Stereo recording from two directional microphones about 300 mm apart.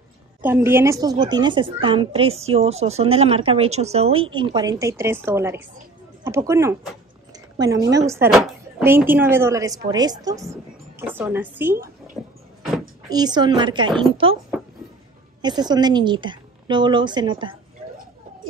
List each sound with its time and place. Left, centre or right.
0.4 s a woman's voice: centre
13.1 s a woman's voice: centre
15.4 s a woman's voice: centre